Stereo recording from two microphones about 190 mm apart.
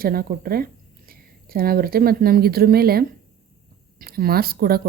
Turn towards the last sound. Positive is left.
turn(degrees=-55)  # may be behind; listen again after turning